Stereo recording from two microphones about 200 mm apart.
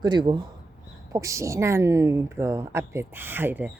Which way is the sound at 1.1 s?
15° right (ahead or behind).